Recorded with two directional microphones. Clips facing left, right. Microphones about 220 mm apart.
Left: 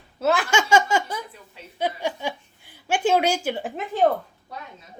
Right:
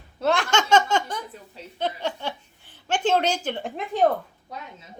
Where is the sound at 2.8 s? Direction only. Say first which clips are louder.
Left 2 dB; 10° left (ahead or behind).